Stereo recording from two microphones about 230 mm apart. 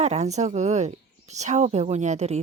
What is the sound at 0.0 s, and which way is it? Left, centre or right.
A woman's voice, right.